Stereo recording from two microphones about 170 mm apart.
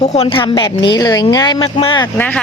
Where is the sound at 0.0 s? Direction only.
40° left (ahead or behind).